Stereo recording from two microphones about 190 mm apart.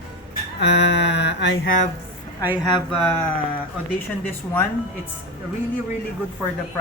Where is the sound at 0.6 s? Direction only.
65° left (ahead or behind).